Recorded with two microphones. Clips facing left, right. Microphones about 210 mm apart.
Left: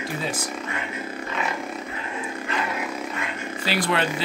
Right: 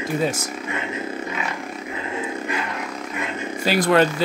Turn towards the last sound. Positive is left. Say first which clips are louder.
# right 7 dB
turn(degrees=-45)  # may be behind; listen again after turning